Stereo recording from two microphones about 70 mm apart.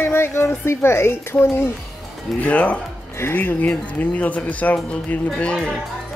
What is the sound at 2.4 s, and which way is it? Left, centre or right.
Speech, left.